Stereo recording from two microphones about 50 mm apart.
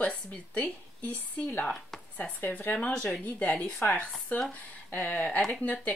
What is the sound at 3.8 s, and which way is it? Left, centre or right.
Speech, left.